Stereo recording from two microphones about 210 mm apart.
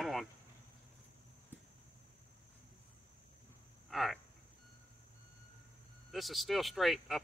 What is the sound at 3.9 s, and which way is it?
Speech, centre (ahead or behind).